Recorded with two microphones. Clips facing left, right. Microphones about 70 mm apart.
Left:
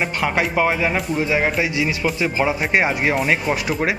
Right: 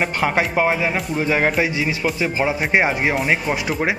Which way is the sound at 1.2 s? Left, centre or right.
Right.